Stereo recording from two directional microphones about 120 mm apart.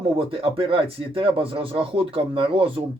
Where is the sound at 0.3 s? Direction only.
50° right (ahead or behind).